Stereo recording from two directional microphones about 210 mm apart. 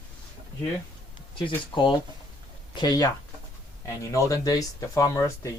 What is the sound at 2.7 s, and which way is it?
Speech, 20° left (ahead or behind).